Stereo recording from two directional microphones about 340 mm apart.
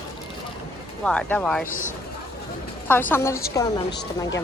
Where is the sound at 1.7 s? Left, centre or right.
Left.